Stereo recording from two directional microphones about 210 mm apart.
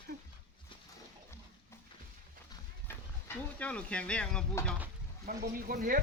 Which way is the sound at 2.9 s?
10° left (ahead or behind).